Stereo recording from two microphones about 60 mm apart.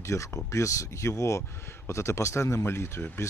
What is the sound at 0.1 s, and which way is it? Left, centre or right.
Speech, left.